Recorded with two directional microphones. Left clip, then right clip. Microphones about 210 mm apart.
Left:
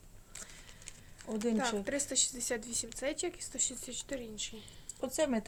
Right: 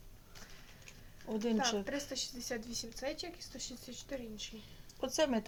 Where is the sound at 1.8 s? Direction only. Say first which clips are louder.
Left 5 dB; 55° left (ahead or behind).